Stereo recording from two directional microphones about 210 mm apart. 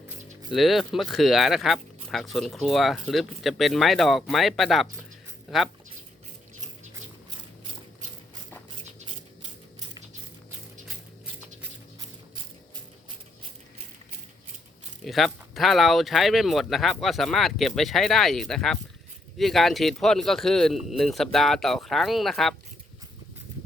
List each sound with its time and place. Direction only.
0.5 s speech: centre (ahead or behind)
12.7 s a sound: 25° right (ahead or behind)
15.0 s speech: centre (ahead or behind)